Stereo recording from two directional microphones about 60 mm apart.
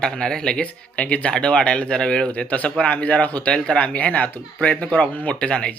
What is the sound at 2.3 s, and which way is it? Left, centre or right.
Speech, left.